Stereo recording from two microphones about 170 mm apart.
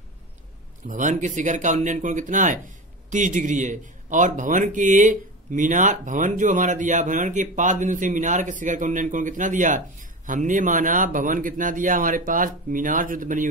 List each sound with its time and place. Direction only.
0.8 s a man's voice: 45° right (ahead or behind)